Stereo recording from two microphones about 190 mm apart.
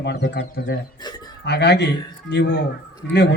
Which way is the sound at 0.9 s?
20° left (ahead or behind).